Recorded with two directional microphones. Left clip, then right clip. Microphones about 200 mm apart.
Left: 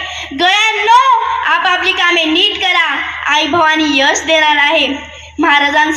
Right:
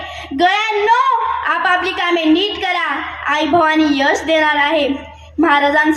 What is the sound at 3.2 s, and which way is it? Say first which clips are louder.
A woman's voice: left 2 dB; 60° right (ahead or behind).